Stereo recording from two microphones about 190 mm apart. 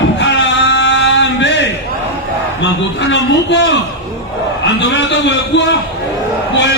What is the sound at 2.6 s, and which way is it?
A man's voice, 70° left (ahead or behind).